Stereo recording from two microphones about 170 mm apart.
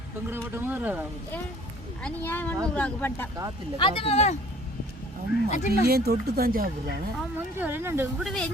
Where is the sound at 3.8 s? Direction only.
30° left (ahead or behind).